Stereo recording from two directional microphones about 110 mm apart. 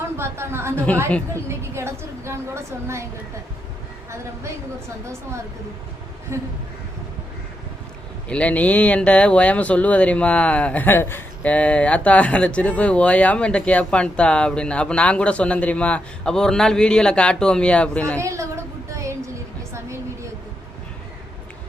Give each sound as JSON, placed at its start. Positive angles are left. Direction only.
{"t": 0.2, "sound": "a woman's voice", "side_deg": -25}
{"t": 0.9, "sound": "speech", "side_deg": 10}
{"t": 1.3, "sound": "a sound", "side_deg": -25}
{"t": 6.3, "sound": "a woman's voice", "side_deg": -25}
{"t": 8.3, "sound": "speech", "side_deg": 10}
{"t": 18.2, "sound": "a sound", "side_deg": -25}